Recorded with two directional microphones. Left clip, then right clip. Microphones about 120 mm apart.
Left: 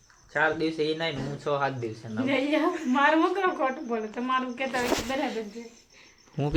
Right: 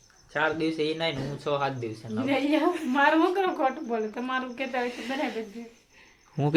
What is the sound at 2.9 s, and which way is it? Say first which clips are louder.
Speech: even; 80° right.